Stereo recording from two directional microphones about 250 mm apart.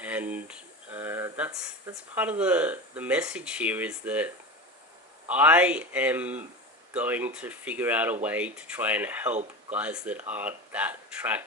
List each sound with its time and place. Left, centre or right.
0.0 s speech: centre
5.3 s speech: centre
9.3 s speech: right
9.7 s speech: centre